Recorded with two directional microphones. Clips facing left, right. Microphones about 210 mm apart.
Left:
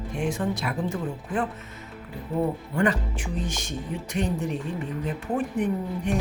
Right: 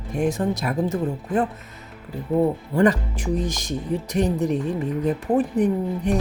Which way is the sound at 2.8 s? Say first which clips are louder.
Right 6 dB; 40° right (ahead or behind).